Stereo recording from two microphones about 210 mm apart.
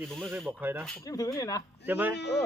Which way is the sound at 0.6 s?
10° right (ahead or behind).